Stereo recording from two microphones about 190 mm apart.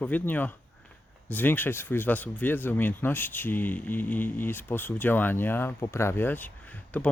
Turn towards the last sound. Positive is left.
turn(degrees=10)  # may be behind; listen again after turning